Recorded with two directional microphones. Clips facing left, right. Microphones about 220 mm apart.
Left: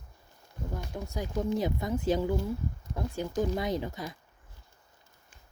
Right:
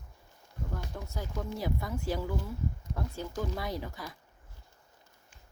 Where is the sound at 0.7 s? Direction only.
15° left (ahead or behind).